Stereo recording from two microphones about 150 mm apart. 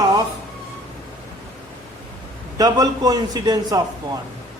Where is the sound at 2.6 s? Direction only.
25° right (ahead or behind).